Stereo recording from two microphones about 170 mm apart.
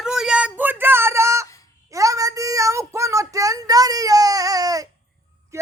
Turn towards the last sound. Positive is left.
turn(degrees=-15)  # may be behind; listen again after turning